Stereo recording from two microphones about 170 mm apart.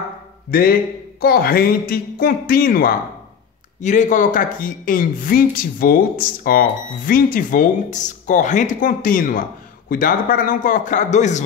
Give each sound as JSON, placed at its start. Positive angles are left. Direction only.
{"t": 0.5, "sound": "speech", "side_deg": 60}
{"t": 3.8, "sound": "speech", "side_deg": 45}